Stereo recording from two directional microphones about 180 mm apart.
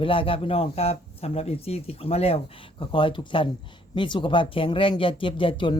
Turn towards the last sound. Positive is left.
turn(degrees=25)  # may be behind; listen again after turning